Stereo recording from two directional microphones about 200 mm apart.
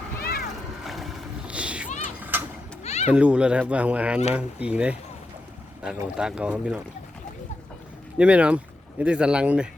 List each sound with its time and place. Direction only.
0.2 s a sound: 50° left (ahead or behind)
0.9 s boat: centre (ahead or behind)
1.9 s a sound: 35° left (ahead or behind)
3.1 s speech: 5° right (ahead or behind)
6.1 s speech: 5° right (ahead or behind)
8.2 s speech: 5° right (ahead or behind)